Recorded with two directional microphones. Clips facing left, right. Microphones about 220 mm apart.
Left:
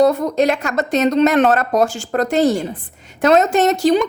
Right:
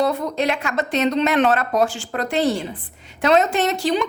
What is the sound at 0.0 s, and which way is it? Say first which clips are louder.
A woman's voice: left 6 dB; 45° left (ahead or behind).